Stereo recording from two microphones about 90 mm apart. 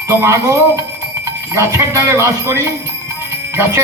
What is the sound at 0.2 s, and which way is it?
Speech, 30° right (ahead or behind).